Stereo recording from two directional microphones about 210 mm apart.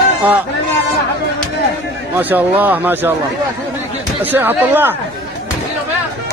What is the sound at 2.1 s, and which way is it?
Speech, 10° right (ahead or behind).